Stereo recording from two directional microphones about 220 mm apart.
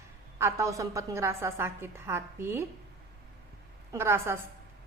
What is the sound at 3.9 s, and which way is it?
Speech, 10° right (ahead or behind).